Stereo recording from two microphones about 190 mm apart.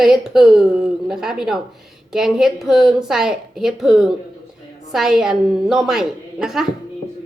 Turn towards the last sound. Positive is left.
turn(degrees=0)  # may be behind; listen again after turning